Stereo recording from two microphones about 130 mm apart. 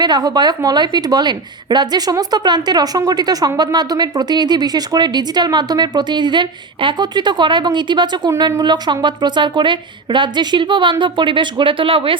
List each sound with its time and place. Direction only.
0.0 s a woman's voice: 30° right (ahead or behind)